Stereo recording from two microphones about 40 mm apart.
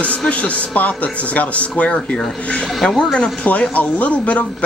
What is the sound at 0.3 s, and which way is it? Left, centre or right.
A man's voice, left.